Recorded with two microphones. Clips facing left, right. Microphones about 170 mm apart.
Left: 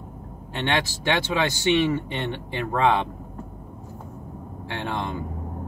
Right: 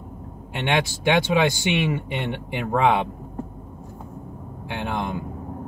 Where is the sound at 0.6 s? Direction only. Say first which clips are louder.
Right 2 dB; 15° right (ahead or behind).